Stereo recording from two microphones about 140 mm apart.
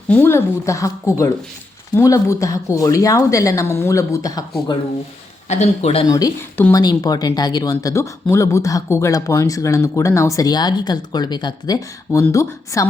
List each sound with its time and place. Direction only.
0.1 s speech: 15° left (ahead or behind)
5.5 s speech: 50° left (ahead or behind)
6.1 s speech: 25° left (ahead or behind)
6.8 s speech: 30° left (ahead or behind)